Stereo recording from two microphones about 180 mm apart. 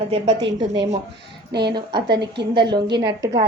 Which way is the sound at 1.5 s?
65° right (ahead or behind).